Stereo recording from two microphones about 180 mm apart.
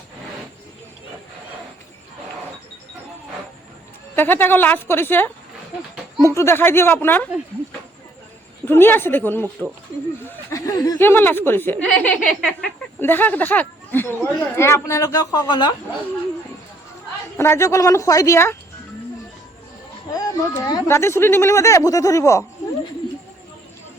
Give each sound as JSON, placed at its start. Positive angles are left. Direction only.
{"t": 4.1, "sound": "speech", "side_deg": 10}
{"t": 6.3, "sound": "speech", "side_deg": 15}
{"t": 8.6, "sound": "speech", "side_deg": 10}
{"t": 13.0, "sound": "speech", "side_deg": 10}
{"t": 17.3, "sound": "speech", "side_deg": 15}
{"t": 20.1, "sound": "speech", "side_deg": 20}